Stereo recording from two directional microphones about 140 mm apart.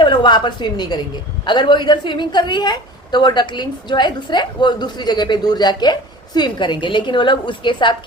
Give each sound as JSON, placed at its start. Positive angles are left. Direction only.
{"t": 0.0, "sound": "a woman's voice", "side_deg": 35}